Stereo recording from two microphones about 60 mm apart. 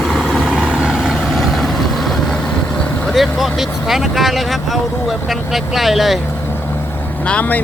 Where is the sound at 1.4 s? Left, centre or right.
Centre.